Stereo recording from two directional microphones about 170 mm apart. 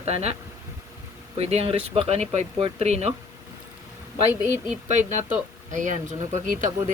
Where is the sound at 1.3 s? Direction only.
35° right (ahead or behind).